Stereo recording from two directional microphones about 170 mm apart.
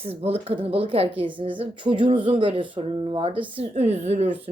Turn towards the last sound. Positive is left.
turn(degrees=-40)  # may be behind; listen again after turning